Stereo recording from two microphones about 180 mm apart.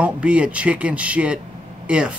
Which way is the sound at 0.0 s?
5° right (ahead or behind).